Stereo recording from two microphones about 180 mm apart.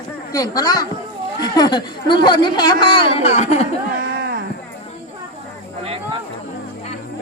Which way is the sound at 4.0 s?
60° right (ahead or behind).